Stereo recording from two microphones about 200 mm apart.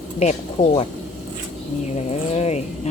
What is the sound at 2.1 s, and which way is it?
Speech, 35° left (ahead or behind).